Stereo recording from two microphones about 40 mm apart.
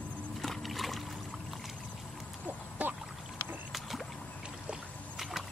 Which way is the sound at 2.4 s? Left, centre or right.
Right.